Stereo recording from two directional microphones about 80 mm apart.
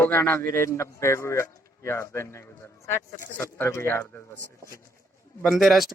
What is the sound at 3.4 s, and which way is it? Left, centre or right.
Speech, left.